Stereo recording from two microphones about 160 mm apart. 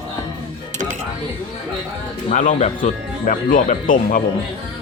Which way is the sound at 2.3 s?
50° left (ahead or behind).